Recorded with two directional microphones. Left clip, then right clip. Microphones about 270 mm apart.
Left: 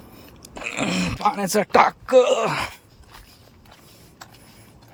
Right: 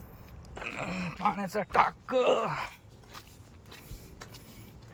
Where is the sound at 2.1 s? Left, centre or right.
Centre.